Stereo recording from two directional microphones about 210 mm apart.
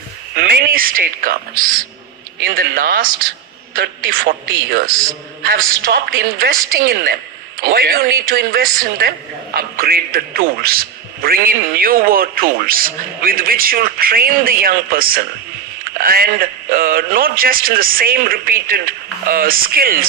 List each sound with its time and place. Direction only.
0.3 s a woman's voice: 45° right (ahead or behind)